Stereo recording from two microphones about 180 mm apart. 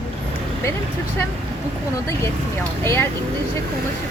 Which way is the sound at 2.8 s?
10° left (ahead or behind).